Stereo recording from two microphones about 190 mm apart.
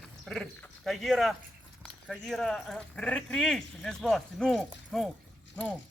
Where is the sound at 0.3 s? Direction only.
Centre (ahead or behind).